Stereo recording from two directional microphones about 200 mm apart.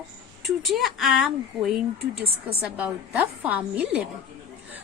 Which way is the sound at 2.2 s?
30° right (ahead or behind).